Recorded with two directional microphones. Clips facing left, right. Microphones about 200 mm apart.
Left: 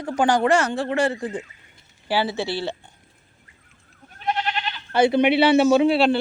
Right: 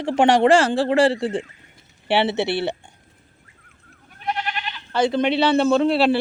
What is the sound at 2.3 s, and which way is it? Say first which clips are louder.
Speech: right 4 dB; 65° right (ahead or behind).